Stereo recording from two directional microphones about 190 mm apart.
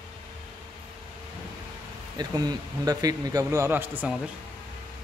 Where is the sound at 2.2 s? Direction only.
20° right (ahead or behind).